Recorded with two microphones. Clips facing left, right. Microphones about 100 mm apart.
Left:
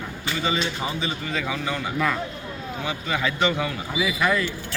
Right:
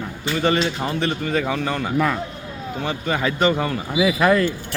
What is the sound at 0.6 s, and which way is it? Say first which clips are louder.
A man's voice: right 5 dB; 65° right (ahead or behind).